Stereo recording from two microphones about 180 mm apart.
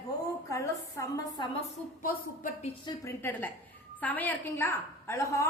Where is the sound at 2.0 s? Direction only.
50° left (ahead or behind).